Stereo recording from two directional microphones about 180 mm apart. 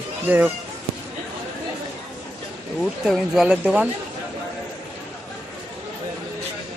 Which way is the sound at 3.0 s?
5° right (ahead or behind).